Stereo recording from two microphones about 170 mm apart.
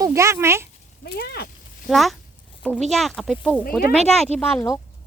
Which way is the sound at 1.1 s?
70° left (ahead or behind).